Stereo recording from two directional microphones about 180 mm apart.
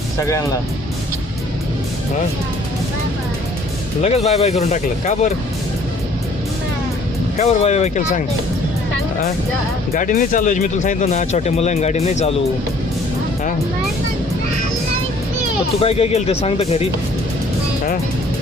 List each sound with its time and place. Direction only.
0.2 s speech: 15° left (ahead or behind)
4.0 s speech: 35° left (ahead or behind)
7.3 s speech: 35° left (ahead or behind)
9.9 s speech: 45° left (ahead or behind)
15.8 s speech: 35° left (ahead or behind)